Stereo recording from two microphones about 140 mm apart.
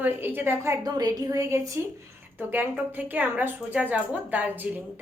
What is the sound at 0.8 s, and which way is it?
A woman's voice, 30° right (ahead or behind).